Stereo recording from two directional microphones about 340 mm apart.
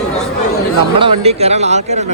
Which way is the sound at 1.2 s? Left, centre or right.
Centre.